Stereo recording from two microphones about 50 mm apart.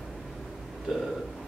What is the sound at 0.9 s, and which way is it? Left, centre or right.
Speech, centre.